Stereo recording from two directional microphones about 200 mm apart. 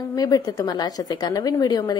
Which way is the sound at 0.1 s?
20° left (ahead or behind).